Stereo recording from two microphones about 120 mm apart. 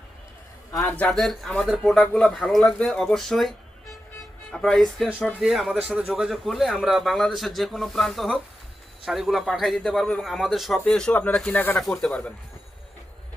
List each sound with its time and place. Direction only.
0.9 s speech: 15° left (ahead or behind)
1.1 s a man's voice: centre (ahead or behind)
4.5 s a man's voice: 5° left (ahead or behind)